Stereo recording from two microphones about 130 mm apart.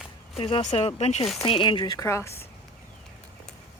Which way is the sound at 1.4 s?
40° left (ahead or behind).